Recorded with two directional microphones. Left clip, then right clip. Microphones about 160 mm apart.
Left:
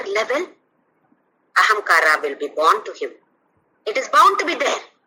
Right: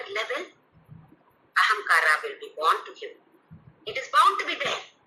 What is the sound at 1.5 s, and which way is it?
A woman's voice, 90° left.